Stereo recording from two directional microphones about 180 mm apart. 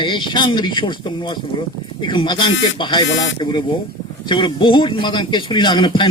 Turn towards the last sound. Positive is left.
turn(degrees=25)  # may be behind; listen again after turning